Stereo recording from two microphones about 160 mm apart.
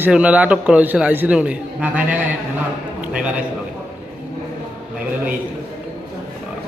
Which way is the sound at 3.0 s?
5° right (ahead or behind).